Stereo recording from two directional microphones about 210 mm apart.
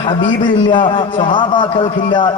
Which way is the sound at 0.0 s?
20° left (ahead or behind).